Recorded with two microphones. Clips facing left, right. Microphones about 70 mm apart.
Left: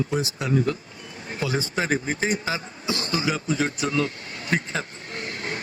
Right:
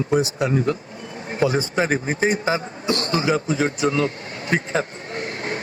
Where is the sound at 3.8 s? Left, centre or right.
Right.